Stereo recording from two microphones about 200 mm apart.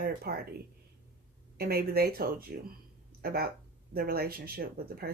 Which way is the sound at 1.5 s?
50° right (ahead or behind).